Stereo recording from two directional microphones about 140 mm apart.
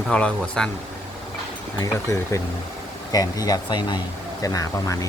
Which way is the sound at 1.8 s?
20° left (ahead or behind).